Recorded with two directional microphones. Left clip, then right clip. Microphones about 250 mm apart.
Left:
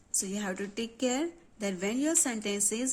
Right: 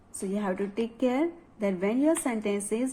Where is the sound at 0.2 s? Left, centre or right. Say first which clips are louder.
Right 5 dB; left.